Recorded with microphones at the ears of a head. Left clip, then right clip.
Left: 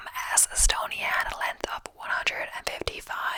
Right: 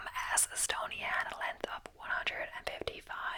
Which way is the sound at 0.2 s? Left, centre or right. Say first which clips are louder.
Left 8 dB; left.